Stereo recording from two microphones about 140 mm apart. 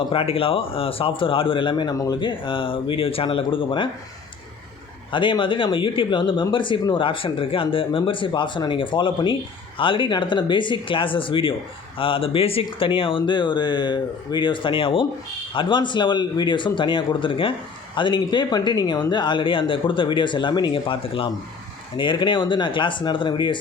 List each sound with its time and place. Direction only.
0.1 s speech: 40° left (ahead or behind)
5.1 s speech: 35° left (ahead or behind)